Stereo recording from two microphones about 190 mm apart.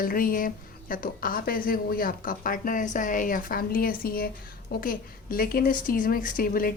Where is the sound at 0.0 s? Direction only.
50° left (ahead or behind).